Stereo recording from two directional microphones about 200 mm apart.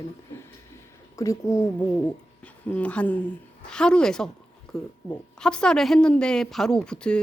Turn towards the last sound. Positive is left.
turn(degrees=5)  # may be behind; listen again after turning